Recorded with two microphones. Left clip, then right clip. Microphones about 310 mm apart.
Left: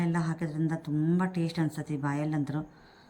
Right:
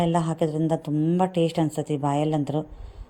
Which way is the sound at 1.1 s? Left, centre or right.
Right.